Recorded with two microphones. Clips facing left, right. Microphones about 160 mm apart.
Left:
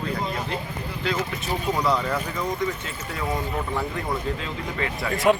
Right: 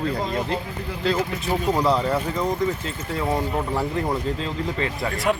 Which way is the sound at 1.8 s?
30° right (ahead or behind).